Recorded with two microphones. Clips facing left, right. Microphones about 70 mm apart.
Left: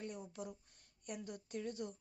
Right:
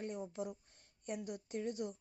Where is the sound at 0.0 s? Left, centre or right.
Right.